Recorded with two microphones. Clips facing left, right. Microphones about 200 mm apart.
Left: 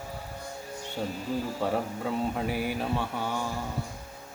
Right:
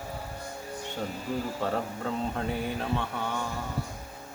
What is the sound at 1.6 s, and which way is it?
Mantra, 10° left (ahead or behind).